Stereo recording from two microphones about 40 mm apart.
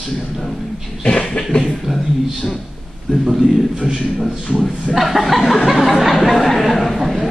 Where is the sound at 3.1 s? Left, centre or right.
Centre.